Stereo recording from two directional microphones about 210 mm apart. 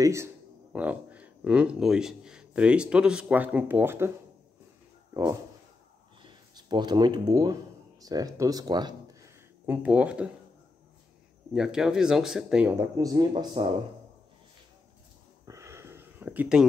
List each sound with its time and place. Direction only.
0.0 s speech: 15° right (ahead or behind)
6.2 s speech: 20° right (ahead or behind)
9.7 s speech: 5° right (ahead or behind)
11.5 s speech: centre (ahead or behind); by 13.7 s 25° right (ahead or behind)
15.4 s a sound: 15° right (ahead or behind)